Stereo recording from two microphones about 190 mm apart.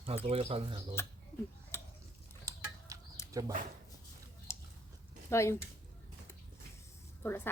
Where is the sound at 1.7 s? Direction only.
15° left (ahead or behind).